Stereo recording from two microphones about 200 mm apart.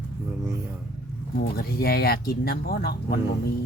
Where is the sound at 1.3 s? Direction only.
50° left (ahead or behind).